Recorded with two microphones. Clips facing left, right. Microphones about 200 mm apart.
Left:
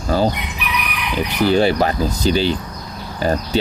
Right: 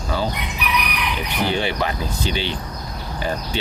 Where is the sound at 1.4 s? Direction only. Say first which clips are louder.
Left 8 dB; 40° left (ahead or behind).